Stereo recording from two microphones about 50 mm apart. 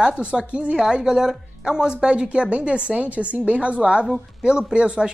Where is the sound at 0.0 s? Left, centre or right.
Right.